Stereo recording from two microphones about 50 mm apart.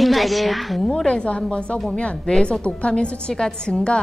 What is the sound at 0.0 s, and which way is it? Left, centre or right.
A woman's voice, centre.